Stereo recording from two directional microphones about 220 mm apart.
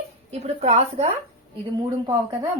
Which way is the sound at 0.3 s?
30° right (ahead or behind).